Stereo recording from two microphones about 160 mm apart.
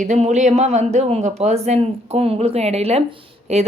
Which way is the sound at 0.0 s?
50° right (ahead or behind).